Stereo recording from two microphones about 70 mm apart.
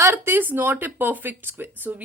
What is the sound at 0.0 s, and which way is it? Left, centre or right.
Speech, right.